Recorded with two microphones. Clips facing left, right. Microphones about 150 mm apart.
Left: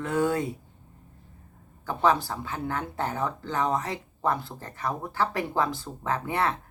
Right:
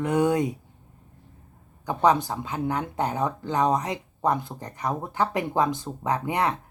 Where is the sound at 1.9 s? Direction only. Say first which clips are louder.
Right 3 dB; 20° right (ahead or behind).